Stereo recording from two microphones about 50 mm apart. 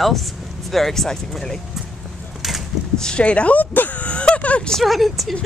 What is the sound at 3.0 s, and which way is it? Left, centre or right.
Speech, left.